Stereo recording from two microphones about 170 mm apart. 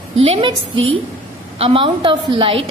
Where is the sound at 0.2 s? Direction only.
30° right (ahead or behind).